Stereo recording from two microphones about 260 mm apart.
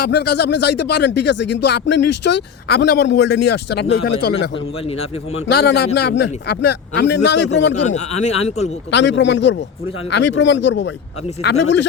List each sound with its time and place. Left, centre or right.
0.0 s speech: left
5.5 s a man's voice: left
7.9 s speech: left
8.9 s a man's voice: left